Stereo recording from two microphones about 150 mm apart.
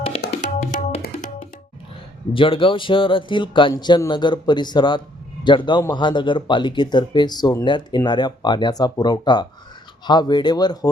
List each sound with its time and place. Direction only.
0.2 s music: 65° left (ahead or behind)
2.3 s speech: 35° left (ahead or behind)